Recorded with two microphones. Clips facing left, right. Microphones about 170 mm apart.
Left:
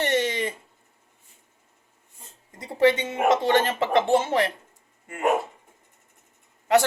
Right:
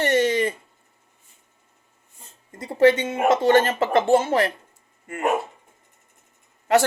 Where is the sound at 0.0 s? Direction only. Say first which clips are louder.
Right 4 dB; 15° left (ahead or behind).